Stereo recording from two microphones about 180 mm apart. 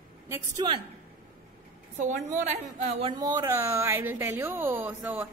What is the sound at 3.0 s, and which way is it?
A woman's voice, 20° right (ahead or behind).